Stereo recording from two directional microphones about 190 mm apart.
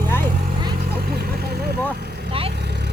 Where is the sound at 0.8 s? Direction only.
55° right (ahead or behind).